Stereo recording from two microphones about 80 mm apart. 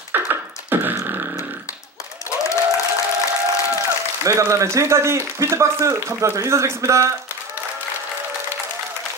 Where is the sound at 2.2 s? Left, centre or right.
Left.